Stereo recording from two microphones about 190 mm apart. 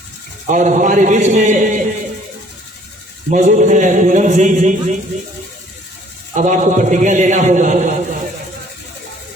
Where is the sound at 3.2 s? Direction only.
40° right (ahead or behind).